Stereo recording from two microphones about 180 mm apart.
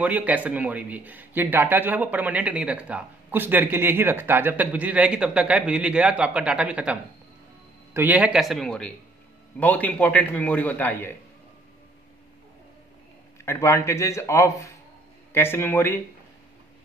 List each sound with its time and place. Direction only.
0.0 s a man's voice: 10° right (ahead or behind); by 11.1 s 10° left (ahead or behind)
13.5 s a man's voice: 15° left (ahead or behind)